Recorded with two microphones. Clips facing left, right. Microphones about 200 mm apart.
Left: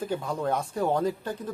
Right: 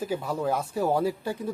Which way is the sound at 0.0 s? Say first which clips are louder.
Right 1 dB; 5° right (ahead or behind).